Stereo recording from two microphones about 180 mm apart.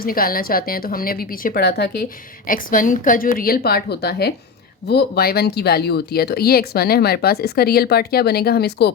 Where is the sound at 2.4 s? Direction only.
50° left (ahead or behind).